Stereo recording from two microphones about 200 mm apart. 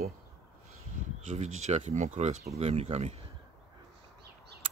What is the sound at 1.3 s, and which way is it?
Speech, 35° right (ahead or behind).